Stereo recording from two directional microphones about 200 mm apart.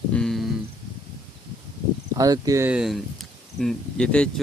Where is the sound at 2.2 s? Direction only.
20° right (ahead or behind).